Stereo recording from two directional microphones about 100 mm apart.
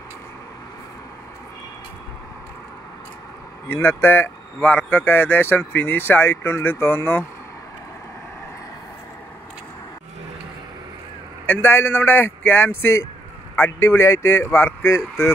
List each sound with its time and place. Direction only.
3.6 s speech: 20° left (ahead or behind)
11.4 s speech: 20° left (ahead or behind)